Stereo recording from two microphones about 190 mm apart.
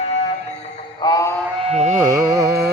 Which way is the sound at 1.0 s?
20° left (ahead or behind).